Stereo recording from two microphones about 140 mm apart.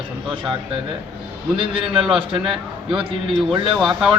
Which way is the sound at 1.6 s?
40° right (ahead or behind).